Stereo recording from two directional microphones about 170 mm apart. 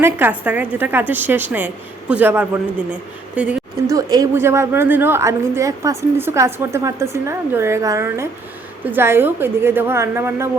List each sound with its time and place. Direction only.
0.0 s a woman's voice: 10° right (ahead or behind)
3.8 s a woman's voice: 20° right (ahead or behind)